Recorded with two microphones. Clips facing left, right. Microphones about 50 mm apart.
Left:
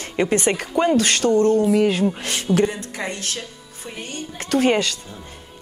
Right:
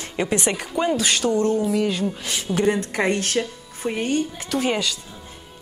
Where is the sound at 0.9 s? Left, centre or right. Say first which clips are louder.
Left 3 dB; left.